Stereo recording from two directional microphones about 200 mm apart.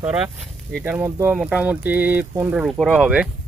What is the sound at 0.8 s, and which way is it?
Speech, 10° right (ahead or behind).